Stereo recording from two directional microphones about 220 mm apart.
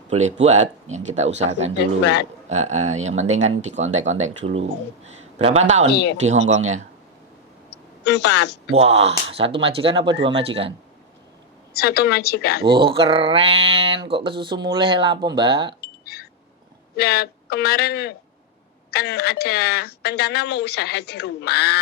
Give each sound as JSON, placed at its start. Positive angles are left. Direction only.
{"t": 0.1, "sound": "speech", "side_deg": -30}
{"t": 1.8, "sound": "speech", "side_deg": 50}
{"t": 2.5, "sound": "speech", "side_deg": -30}
{"t": 8.0, "sound": "speech", "side_deg": 50}
{"t": 8.7, "sound": "speech", "side_deg": -30}
{"t": 11.7, "sound": "speech", "side_deg": 45}
{"t": 12.6, "sound": "speech", "side_deg": -20}
{"t": 15.8, "sound": "a sound", "side_deg": 45}
{"t": 17.0, "sound": "speech", "side_deg": 45}